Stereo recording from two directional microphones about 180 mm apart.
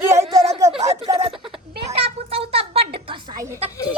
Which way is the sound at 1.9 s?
30° right (ahead or behind).